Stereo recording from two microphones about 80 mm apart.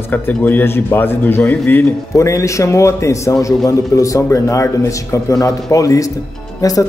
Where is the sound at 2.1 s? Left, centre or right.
Left.